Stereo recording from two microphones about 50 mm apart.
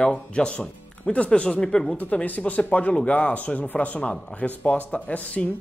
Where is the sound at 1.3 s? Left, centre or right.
Centre.